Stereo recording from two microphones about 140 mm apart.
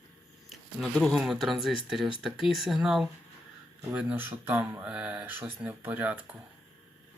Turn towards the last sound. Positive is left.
turn(degrees=-10)  # may be behind; listen again after turning